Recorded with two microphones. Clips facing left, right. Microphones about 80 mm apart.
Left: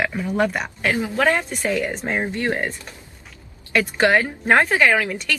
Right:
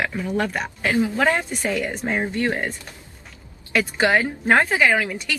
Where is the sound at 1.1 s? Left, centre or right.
Centre.